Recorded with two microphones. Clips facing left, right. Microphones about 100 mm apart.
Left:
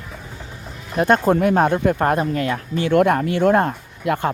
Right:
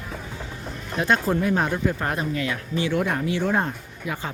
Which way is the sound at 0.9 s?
50° left (ahead or behind).